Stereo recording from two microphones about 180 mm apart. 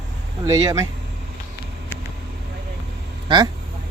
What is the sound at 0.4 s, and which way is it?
Speech, 15° right (ahead or behind).